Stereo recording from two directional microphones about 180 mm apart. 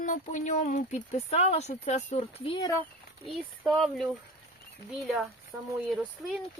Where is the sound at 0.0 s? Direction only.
45° left (ahead or behind); by 2.7 s 25° left (ahead or behind).